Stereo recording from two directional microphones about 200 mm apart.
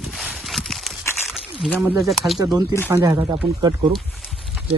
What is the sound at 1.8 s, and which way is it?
Speech, 10° right (ahead or behind).